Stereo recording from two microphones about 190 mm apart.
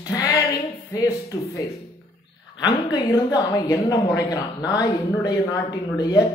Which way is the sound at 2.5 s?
25° left (ahead or behind).